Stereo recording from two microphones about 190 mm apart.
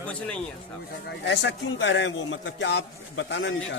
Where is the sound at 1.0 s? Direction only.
70° left (ahead or behind).